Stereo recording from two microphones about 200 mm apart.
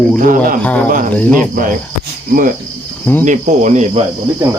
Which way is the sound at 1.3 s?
45° right (ahead or behind).